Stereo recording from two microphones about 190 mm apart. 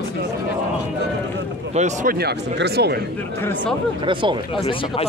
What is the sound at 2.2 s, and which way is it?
Speech, 55° right (ahead or behind).